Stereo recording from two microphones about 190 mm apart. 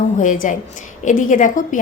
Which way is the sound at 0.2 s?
40° left (ahead or behind).